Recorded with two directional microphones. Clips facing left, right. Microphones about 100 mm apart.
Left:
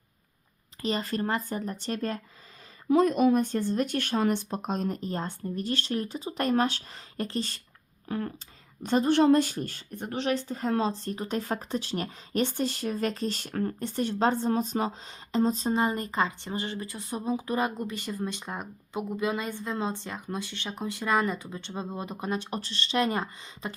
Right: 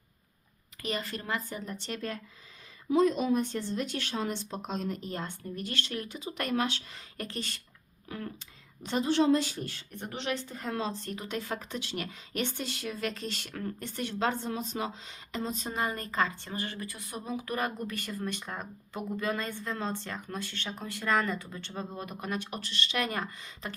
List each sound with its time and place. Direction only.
0.8 s speech: 30° left (ahead or behind)
2.9 s speech: 55° left (ahead or behind); by 23.7 s 25° left (ahead or behind)